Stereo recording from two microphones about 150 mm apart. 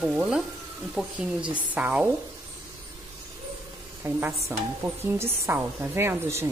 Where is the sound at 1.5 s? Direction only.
10° right (ahead or behind).